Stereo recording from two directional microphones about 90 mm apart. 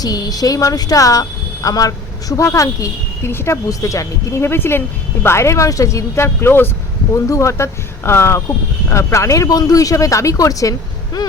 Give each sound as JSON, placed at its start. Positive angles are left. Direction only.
{"t": 0.0, "sound": "a woman's voice", "side_deg": 45}